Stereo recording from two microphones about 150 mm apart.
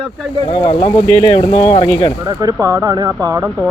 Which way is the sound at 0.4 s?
35° left (ahead or behind).